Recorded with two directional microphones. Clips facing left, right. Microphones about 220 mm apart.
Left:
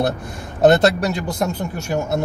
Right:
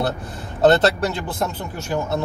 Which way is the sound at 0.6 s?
15° left (ahead or behind).